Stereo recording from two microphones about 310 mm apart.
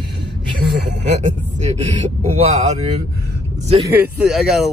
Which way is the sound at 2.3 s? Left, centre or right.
Centre.